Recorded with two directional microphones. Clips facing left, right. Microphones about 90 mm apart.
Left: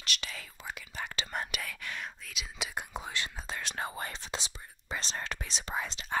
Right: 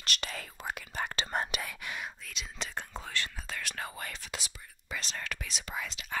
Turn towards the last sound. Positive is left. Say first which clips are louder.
# left 3 dB
turn(degrees=30)  # may be behind; listen again after turning